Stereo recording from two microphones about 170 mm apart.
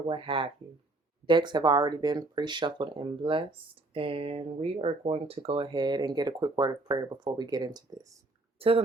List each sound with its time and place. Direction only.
0.1 s speech: 30° right (ahead or behind)
8.5 s speech: 35° right (ahead or behind)